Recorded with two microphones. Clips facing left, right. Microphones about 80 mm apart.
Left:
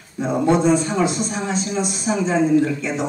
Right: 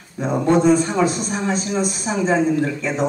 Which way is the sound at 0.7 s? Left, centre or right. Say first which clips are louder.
Right 1 dB; right.